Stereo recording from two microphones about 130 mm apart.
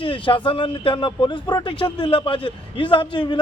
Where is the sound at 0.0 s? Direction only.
40° left (ahead or behind).